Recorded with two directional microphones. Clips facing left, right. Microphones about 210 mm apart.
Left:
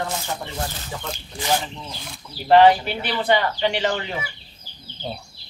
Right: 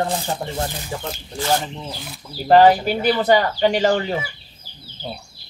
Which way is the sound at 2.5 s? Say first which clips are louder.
Right 1 dB; 40° right (ahead or behind).